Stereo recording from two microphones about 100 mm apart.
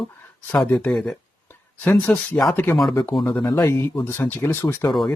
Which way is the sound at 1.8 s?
20° left (ahead or behind).